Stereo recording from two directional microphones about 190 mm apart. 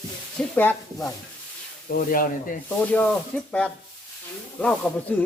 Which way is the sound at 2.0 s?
45° left (ahead or behind).